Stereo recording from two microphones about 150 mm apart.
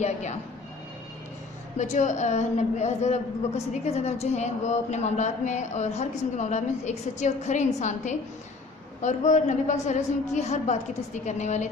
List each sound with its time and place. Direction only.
0.0 s a woman's voice: 50° left (ahead or behind)
1.8 s a woman's voice: 50° left (ahead or behind)